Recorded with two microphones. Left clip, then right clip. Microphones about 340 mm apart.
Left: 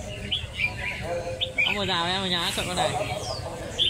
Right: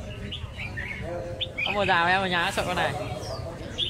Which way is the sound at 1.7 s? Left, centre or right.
Right.